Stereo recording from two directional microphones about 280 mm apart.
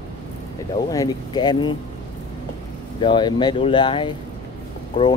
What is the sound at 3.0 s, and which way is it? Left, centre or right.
Speech, centre.